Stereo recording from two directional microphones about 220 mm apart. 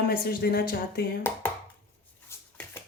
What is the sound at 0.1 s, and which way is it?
Speech, 45° left (ahead or behind).